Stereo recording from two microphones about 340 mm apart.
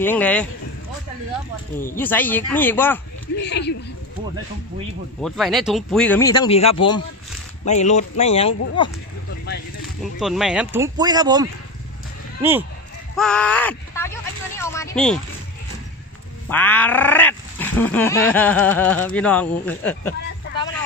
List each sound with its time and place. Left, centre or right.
0.0 s speech: centre
2.0 s speech: centre
3.3 s speech: left
5.2 s speech: centre
10.1 s speech: centre
13.1 s a sound: centre
16.4 s speech: centre